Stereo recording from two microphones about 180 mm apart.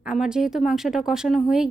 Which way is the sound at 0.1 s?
5° right (ahead or behind).